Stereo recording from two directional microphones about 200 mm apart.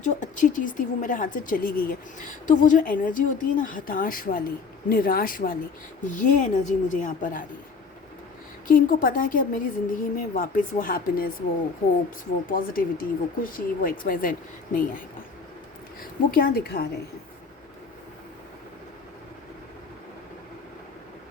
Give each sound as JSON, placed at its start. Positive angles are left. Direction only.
{"t": 0.0, "sound": "a woman's voice", "side_deg": 40}
{"t": 8.6, "sound": "a woman's voice", "side_deg": 45}
{"t": 12.5, "sound": "a woman's voice", "side_deg": 45}
{"t": 16.3, "sound": "a woman's voice", "side_deg": 50}